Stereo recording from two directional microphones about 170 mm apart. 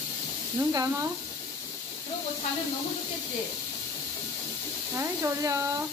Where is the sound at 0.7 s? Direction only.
15° right (ahead or behind).